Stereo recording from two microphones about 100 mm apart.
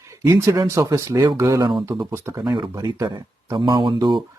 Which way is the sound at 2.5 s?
50° right (ahead or behind).